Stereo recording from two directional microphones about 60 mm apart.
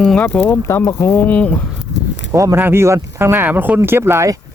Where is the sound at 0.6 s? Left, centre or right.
Left.